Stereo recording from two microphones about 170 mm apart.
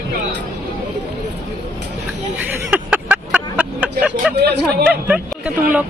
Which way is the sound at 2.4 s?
10° right (ahead or behind).